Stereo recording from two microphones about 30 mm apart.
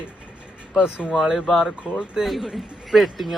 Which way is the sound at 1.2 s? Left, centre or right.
Right.